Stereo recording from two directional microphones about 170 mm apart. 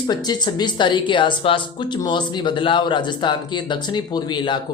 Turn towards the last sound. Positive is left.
turn(degrees=25)  # may be behind; listen again after turning